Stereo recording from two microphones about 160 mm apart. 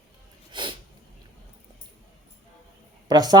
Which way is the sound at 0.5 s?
30° right (ahead or behind).